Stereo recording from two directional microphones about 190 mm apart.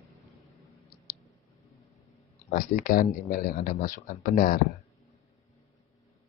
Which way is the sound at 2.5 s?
50° left (ahead or behind).